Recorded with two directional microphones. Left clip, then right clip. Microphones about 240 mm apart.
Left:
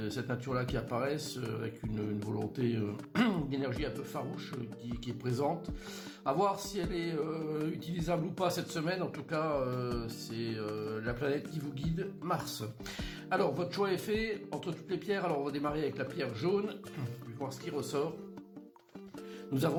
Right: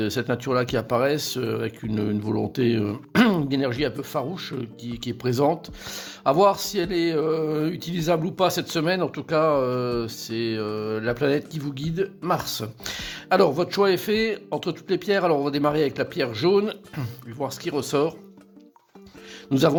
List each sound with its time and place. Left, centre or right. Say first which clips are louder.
0.0 s speech: right 13 dB; right
19.5 s speech: right 13 dB; right